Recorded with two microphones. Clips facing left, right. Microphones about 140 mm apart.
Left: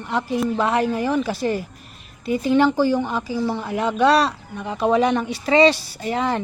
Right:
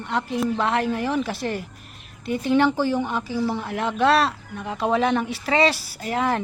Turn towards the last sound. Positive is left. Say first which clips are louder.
# left 1 dB
turn(degrees=0)  # may be behind; listen again after turning